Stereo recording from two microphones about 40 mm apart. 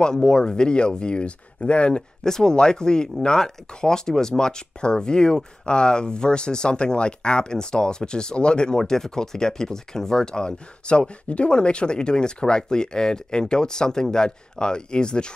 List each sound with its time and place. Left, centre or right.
0.0 s speech: left
2.2 s speech: centre